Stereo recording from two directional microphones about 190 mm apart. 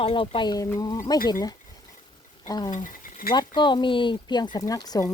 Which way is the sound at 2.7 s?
40° left (ahead or behind).